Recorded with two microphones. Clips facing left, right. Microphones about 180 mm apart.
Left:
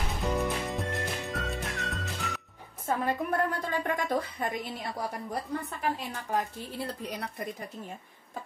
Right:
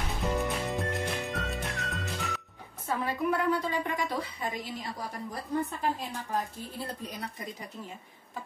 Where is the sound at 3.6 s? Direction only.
50° left (ahead or behind).